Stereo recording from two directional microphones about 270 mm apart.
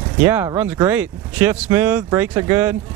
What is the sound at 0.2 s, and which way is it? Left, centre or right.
Speech, centre.